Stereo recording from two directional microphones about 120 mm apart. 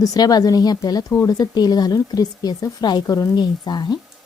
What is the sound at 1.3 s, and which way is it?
Speech, 35° left (ahead or behind).